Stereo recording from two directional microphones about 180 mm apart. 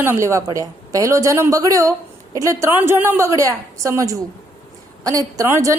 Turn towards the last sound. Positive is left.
turn(degrees=-15)  # may be behind; listen again after turning